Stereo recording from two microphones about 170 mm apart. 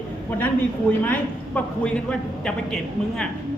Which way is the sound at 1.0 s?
10° left (ahead or behind).